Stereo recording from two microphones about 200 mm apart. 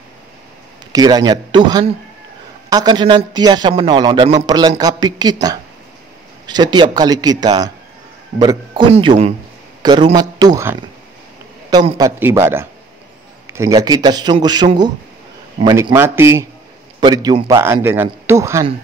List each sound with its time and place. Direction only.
0.9 s a man's voice: 20° right (ahead or behind)
8.9 s a man's voice: 30° right (ahead or behind); by 18.7 s 15° right (ahead or behind)